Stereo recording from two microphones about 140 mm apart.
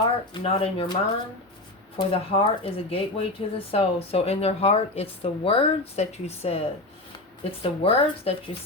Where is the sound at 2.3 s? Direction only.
40° left (ahead or behind).